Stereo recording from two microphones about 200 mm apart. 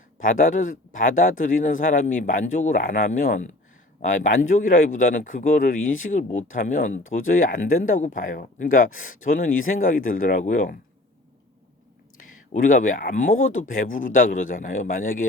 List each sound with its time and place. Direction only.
0.2 s speech: 40° left (ahead or behind)
12.5 s speech: 40° left (ahead or behind)